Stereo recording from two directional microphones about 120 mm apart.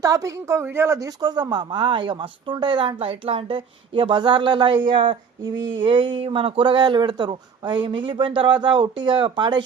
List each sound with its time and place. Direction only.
0.0 s a woman's voice: 25° right (ahead or behind)